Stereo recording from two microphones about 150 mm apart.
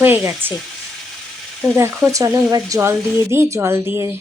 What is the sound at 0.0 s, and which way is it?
Speech, 15° right (ahead or behind).